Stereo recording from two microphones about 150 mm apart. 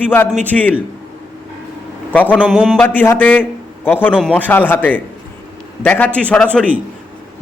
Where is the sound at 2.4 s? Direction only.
5° right (ahead or behind).